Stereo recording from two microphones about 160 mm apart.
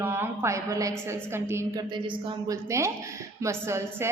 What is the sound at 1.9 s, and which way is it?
Speech, 30° right (ahead or behind).